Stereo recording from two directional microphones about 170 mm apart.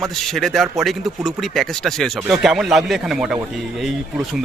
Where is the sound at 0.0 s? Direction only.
Centre (ahead or behind).